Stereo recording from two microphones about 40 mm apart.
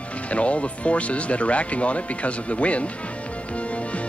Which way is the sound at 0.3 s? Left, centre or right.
Left.